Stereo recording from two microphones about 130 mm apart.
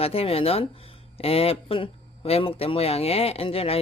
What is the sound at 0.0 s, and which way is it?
Speech, 50° left (ahead or behind).